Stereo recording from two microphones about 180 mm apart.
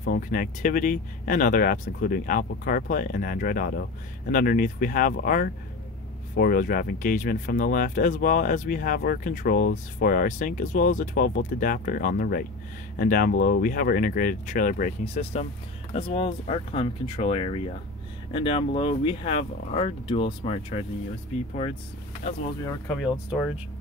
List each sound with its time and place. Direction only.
0.0 s speech: 55° left (ahead or behind)
15.9 s speech: 35° left (ahead or behind)